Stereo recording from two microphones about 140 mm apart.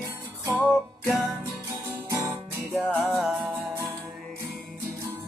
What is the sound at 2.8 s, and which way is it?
Music, 5° left (ahead or behind).